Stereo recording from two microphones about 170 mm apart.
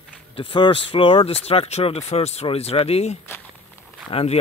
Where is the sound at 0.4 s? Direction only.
30° left (ahead or behind).